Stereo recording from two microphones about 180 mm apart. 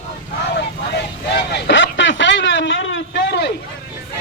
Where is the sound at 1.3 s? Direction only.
70° left (ahead or behind).